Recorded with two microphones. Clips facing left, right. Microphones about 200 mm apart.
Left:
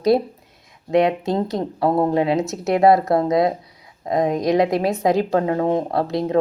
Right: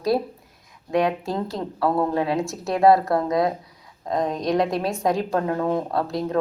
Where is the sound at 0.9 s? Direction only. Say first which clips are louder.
Left 5 dB; 20° left (ahead or behind).